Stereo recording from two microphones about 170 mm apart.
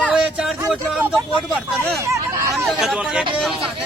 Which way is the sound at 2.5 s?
Centre (ahead or behind).